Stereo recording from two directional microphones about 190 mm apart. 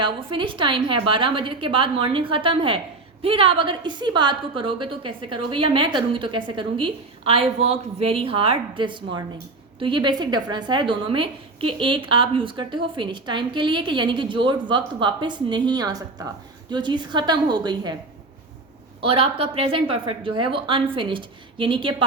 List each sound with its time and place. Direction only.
0.0 s a woman's voice: 25° right (ahead or behind)
19.0 s a woman's voice: 30° right (ahead or behind)